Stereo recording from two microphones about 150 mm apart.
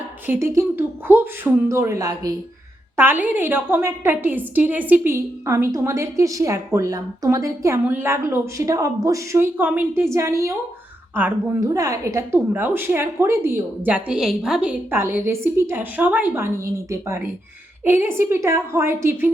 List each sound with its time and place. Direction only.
0.5 s a woman's voice: 15° right (ahead or behind)
2.9 s a woman's voice: 15° right (ahead or behind)